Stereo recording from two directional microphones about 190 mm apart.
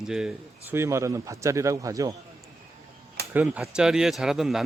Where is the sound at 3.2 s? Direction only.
5° right (ahead or behind).